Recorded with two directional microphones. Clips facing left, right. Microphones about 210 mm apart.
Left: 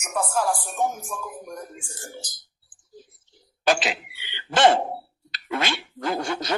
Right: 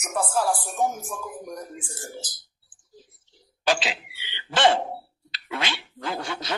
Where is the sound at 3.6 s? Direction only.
50° left (ahead or behind).